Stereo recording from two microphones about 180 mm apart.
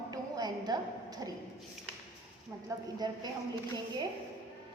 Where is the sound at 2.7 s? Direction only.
20° right (ahead or behind).